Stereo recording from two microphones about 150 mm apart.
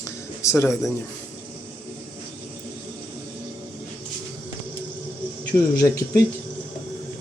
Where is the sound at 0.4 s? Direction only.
20° left (ahead or behind).